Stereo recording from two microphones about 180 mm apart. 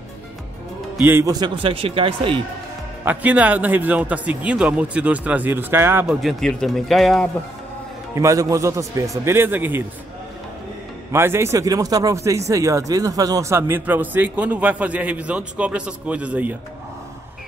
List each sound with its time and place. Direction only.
1.0 s a man's voice: 15° right (ahead or behind)
3.1 s speech: 10° right (ahead or behind)
6.0 s speech: centre (ahead or behind)
8.1 s speech: 15° right (ahead or behind)
11.1 s speech: 15° right (ahead or behind)